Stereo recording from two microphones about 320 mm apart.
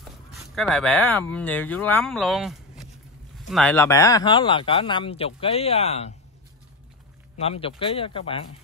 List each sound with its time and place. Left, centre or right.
0.3 s speech: centre
7.3 s speech: centre